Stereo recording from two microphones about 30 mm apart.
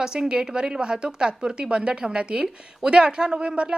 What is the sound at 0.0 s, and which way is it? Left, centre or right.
A woman's voice, right.